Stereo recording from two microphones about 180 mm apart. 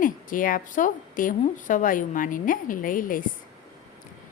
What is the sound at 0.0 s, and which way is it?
A woman's voice, 50° left (ahead or behind).